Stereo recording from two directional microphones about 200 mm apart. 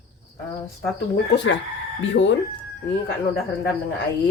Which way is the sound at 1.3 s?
65° left (ahead or behind).